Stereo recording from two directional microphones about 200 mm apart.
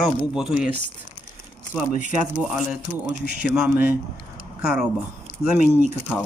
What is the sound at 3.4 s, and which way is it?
Speech, 5° right (ahead or behind).